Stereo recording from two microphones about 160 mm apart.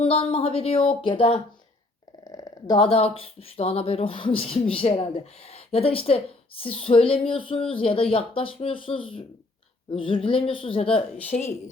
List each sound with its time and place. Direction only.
0.0 s speech: 35° left (ahead or behind)
2.2 s a sound: 25° left (ahead or behind)
2.7 s speech: 35° left (ahead or behind)
11.3 s speech: 55° left (ahead or behind)